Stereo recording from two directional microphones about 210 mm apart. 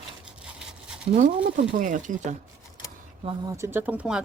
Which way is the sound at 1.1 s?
35° right (ahead or behind).